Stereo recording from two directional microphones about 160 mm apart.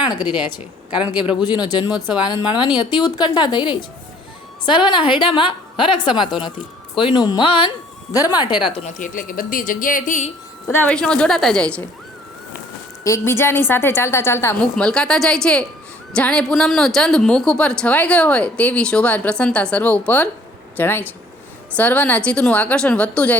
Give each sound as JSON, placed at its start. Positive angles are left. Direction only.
{"t": 0.1, "sound": "a woman's voice", "side_deg": 25}
{"t": 9.0, "sound": "speech", "side_deg": 60}
{"t": 10.7, "sound": "a woman's voice", "side_deg": 10}
{"t": 13.1, "sound": "a woman's voice", "side_deg": 15}